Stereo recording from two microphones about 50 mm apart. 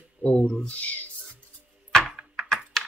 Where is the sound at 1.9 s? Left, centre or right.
Centre.